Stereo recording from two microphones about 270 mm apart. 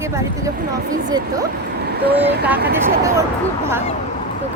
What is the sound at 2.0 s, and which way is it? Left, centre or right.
Speech, right.